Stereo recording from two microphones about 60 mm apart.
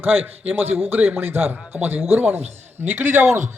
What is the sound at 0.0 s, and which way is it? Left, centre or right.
A man's voice, right.